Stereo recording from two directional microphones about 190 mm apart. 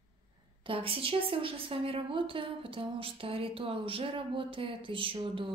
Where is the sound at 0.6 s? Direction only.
30° right (ahead or behind).